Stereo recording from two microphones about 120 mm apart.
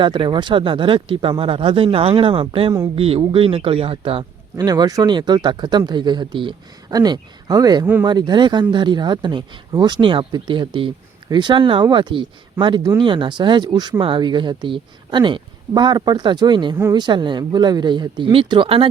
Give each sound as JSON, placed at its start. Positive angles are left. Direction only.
{"t": 0.0, "sound": "a man's voice", "side_deg": -40}